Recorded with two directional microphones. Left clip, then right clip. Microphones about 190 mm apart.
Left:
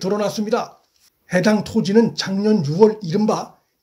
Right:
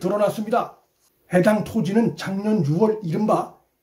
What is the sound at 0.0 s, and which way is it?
Speech, 35° left (ahead or behind).